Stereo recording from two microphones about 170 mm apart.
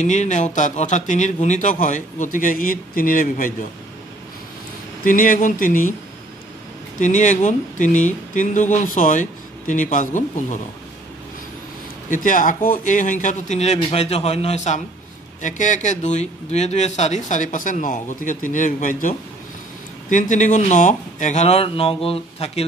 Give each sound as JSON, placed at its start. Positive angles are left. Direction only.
{"t": 0.0, "sound": "speech", "side_deg": 45}
{"t": 5.0, "sound": "speech", "side_deg": 50}
{"t": 7.0, "sound": "speech", "side_deg": 45}
{"t": 12.1, "sound": "speech", "side_deg": 50}